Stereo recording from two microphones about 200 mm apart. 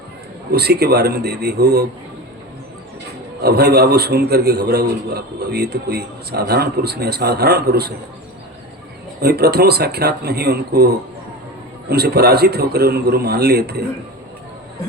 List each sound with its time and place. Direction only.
0.5 s a man's voice: 55° right (ahead or behind)
3.4 s a man's voice: 55° right (ahead or behind)
9.2 s a man's voice: 55° right (ahead or behind)